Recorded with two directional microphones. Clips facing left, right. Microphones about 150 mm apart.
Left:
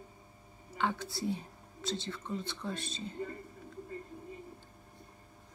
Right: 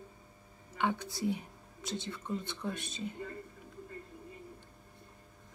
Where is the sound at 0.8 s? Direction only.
15° right (ahead or behind).